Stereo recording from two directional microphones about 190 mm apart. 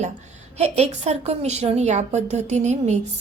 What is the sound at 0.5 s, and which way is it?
A woman's voice, 35° right (ahead or behind).